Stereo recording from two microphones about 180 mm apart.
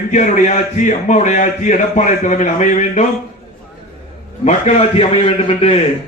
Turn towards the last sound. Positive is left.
turn(degrees=35)  # may be behind; listen again after turning